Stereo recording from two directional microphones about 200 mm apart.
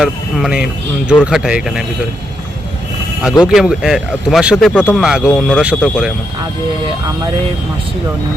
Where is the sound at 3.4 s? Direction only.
5° right (ahead or behind).